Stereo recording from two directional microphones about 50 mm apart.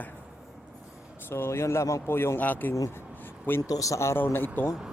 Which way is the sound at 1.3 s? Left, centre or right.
Left.